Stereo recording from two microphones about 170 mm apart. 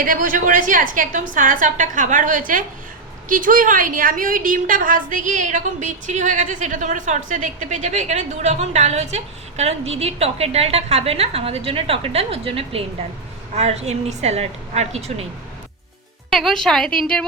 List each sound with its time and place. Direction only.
0.0 s a woman's voice: 55° right (ahead or behind)
16.3 s a woman's voice: centre (ahead or behind)